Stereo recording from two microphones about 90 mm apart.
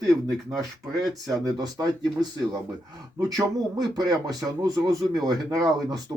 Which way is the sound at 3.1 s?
45° right (ahead or behind).